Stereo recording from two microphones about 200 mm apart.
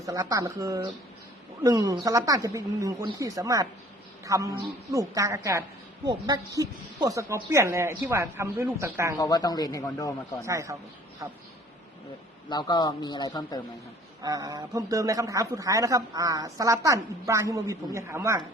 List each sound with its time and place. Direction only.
0.0 s a man's voice: 15° right (ahead or behind)
9.1 s speech: 15° left (ahead or behind)
10.4 s a man's voice: 15° right (ahead or behind)
12.5 s speech: 20° left (ahead or behind)
14.2 s a man's voice: 20° right (ahead or behind)